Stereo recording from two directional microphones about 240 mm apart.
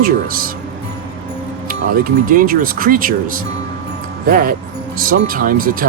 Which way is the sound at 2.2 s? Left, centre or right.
Right.